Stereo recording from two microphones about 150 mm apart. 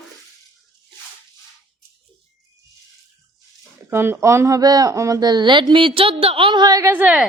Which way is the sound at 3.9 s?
15° right (ahead or behind).